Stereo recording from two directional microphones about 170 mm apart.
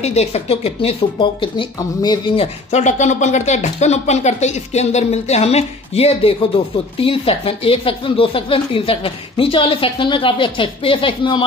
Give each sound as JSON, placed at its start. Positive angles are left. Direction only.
{"t": 0.0, "sound": "speech", "side_deg": 40}